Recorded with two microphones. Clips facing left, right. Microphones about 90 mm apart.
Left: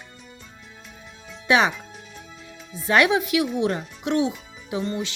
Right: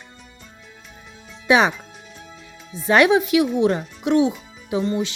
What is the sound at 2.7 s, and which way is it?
Speech, 20° right (ahead or behind).